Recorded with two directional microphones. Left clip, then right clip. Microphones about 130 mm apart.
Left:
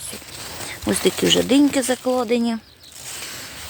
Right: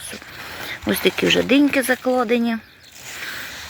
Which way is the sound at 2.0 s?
35° right (ahead or behind).